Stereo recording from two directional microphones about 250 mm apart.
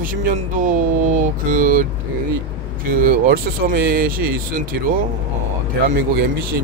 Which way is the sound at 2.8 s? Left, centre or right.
Right.